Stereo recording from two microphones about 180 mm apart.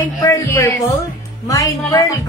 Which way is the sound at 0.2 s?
15° left (ahead or behind).